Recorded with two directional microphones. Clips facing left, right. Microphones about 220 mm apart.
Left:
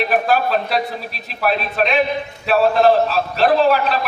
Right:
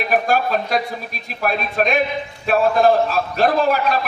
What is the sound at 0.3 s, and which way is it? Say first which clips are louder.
A man's voice: left 1 dB; 45° right (ahead or behind).